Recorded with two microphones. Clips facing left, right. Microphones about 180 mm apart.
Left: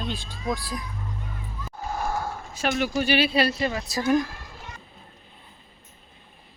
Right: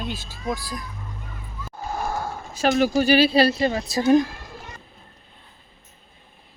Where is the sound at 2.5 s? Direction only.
35° right (ahead or behind).